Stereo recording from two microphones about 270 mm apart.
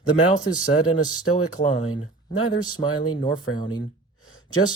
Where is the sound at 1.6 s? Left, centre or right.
Left.